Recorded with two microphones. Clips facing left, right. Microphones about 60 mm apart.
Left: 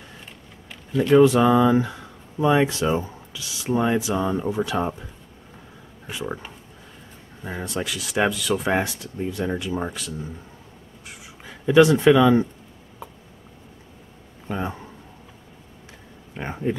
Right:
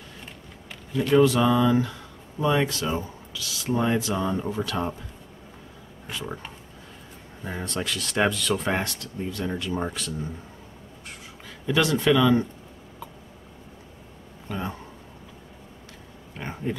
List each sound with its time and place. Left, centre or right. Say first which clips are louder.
1.2 s speech: left 4 dB; left
3.6 s speech: left 3 dB; centre
6.0 s speech: left 4 dB; centre
7.4 s speech: left 2 dB; centre
9.7 s speech: left 1 dB; centre
11.4 s speech: left 9 dB; centre
14.5 s speech: left 4 dB; centre
16.3 s speech: left 5 dB; centre